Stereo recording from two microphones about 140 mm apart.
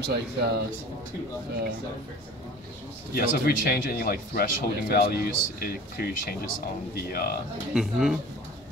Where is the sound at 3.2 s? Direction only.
90° left.